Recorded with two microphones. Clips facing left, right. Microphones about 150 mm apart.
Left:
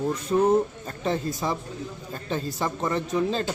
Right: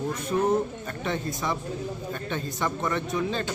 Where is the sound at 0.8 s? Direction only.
35° left (ahead or behind).